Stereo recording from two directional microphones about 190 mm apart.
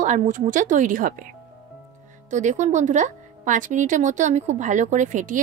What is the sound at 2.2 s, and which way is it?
A woman's voice, 40° right (ahead or behind).